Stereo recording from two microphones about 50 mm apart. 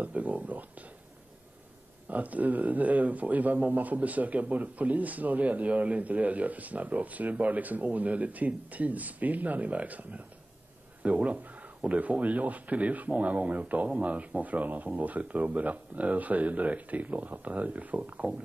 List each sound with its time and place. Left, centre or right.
0.0 s speech: right
2.0 s speech: right